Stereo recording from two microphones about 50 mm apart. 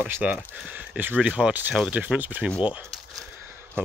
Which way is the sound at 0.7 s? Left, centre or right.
Right.